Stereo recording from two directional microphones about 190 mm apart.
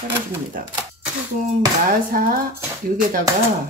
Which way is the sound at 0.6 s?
45° right (ahead or behind).